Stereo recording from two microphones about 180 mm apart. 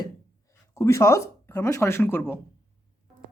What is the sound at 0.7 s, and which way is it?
Speech, 15° left (ahead or behind).